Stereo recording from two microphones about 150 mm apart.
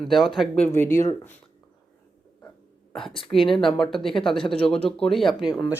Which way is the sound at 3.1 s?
Centre (ahead or behind).